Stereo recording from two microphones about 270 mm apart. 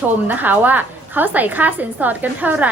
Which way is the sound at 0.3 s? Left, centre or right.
Centre.